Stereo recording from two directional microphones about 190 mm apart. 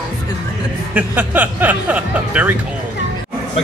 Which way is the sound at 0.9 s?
10° right (ahead or behind).